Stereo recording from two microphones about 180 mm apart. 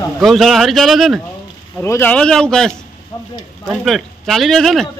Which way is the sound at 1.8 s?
10° left (ahead or behind).